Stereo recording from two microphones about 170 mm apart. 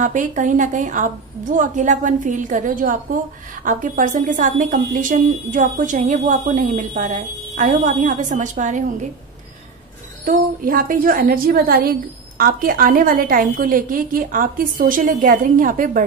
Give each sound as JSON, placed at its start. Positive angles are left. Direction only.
{"t": 0.0, "sound": "a woman's voice", "side_deg": -50}
{"t": 10.2, "sound": "a woman's voice", "side_deg": -55}